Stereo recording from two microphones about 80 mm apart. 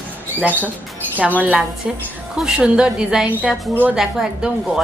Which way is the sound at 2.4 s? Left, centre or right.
Centre.